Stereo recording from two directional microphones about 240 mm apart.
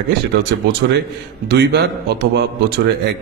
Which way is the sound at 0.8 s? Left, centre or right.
Right.